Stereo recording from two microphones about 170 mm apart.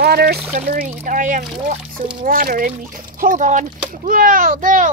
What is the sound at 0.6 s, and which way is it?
Speech, 55° right (ahead or behind).